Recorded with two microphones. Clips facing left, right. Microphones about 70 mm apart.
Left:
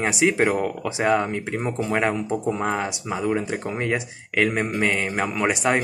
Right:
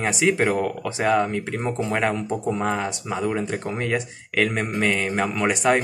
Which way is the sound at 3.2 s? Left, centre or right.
Centre.